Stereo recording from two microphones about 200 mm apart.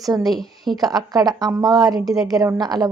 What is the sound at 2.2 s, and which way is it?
Speech, 20° right (ahead or behind).